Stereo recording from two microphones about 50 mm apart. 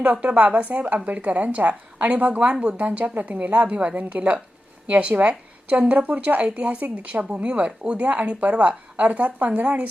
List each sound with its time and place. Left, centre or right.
0.0 s a woman's voice: right